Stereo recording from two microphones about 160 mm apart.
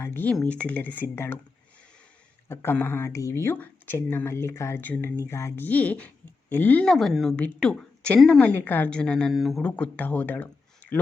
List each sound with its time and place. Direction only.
0.0 s speech: 15° left (ahead or behind)
2.5 s a woman's voice: 15° left (ahead or behind)